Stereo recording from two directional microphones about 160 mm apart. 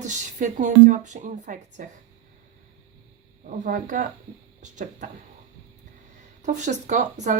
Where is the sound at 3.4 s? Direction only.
55° right (ahead or behind).